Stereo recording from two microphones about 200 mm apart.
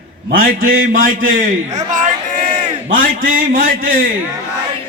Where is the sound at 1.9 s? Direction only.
40° right (ahead or behind).